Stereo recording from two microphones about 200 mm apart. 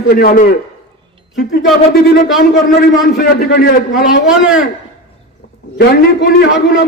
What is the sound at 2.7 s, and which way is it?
A man's voice, 50° left (ahead or behind).